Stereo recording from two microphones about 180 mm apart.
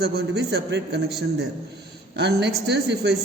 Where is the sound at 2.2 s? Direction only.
70° right (ahead or behind).